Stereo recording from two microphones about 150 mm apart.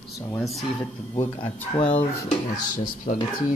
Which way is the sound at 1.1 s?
35° left (ahead or behind).